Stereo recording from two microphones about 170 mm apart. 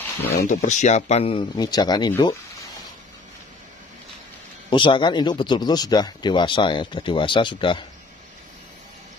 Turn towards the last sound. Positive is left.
turn(degrees=30)  # may be behind; listen again after turning